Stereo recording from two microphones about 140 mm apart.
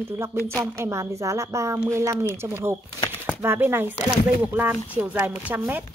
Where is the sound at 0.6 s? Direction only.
20° right (ahead or behind).